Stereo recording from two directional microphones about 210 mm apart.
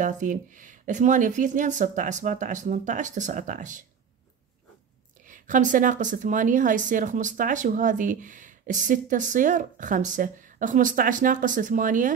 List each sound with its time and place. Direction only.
0.0 s a woman's voice: 40° right (ahead or behind)
5.2 s a woman's voice: 40° right (ahead or behind)